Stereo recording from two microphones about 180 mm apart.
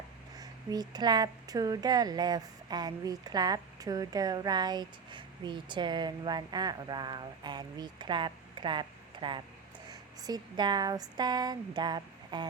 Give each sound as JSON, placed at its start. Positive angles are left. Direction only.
{"t": 0.3, "sound": "speech", "side_deg": -20}